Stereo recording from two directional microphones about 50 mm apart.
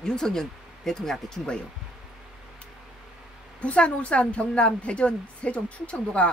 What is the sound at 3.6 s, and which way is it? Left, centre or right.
A woman's voice, left.